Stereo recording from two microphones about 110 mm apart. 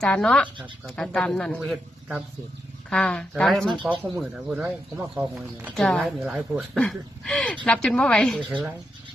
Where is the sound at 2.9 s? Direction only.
10° left (ahead or behind).